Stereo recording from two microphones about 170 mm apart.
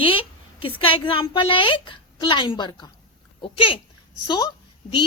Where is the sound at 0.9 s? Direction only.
30° left (ahead or behind).